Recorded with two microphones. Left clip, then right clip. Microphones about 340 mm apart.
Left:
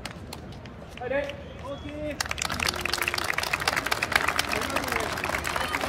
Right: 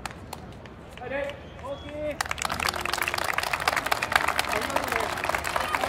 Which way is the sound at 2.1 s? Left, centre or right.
Centre.